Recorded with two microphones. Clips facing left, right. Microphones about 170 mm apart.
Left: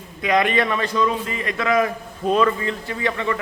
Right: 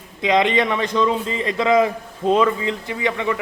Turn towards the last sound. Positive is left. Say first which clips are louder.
# right 1 dB
turn(degrees=-15)  # may be behind; listen again after turning